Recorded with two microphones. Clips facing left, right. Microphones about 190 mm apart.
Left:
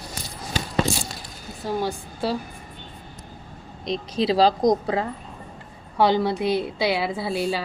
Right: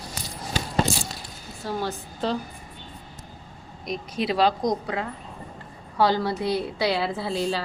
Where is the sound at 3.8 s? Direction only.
30° left (ahead or behind).